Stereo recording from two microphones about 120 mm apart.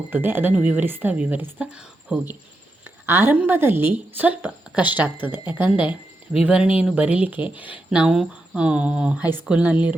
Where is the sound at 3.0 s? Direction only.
20° right (ahead or behind).